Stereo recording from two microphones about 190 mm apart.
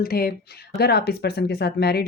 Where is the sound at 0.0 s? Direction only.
55° left (ahead or behind).